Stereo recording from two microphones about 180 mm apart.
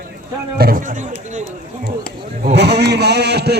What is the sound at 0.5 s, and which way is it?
Chatter, 55° right (ahead or behind).